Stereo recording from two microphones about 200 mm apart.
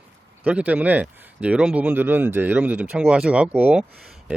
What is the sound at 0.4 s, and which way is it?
Speech, 5° right (ahead or behind).